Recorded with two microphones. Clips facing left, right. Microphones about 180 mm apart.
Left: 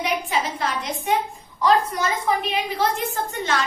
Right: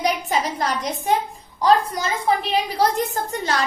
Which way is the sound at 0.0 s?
40° right (ahead or behind).